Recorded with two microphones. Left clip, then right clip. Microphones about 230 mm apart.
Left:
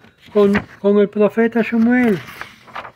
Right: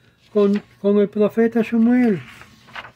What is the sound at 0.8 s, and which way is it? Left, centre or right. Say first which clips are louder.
Speech: left 3 dB; centre.